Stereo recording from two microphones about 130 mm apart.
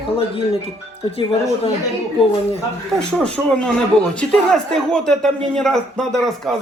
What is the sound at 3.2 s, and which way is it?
A man's voice, 5° left (ahead or behind).